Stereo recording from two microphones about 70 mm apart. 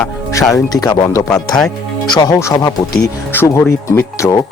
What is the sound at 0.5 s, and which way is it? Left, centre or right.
Speech, left.